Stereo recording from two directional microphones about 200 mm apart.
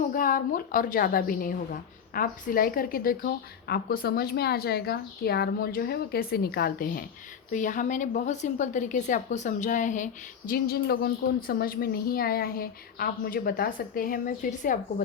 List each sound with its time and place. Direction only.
0.1 s a woman's voice: 45° left (ahead or behind)